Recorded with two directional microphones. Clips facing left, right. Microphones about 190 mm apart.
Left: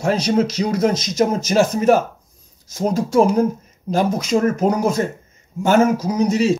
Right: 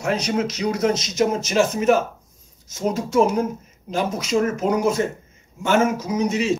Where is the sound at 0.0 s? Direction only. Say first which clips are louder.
Left 5 dB; 30° left (ahead or behind).